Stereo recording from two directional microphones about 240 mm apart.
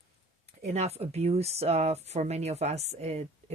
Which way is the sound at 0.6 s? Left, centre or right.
Right.